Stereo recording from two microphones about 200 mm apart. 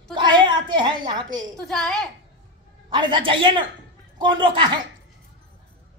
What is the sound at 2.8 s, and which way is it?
A woman's voice, 25° right (ahead or behind).